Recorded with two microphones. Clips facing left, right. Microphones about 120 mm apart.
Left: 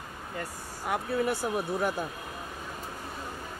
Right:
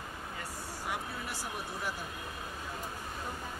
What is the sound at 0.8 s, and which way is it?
Speech, 55° left (ahead or behind).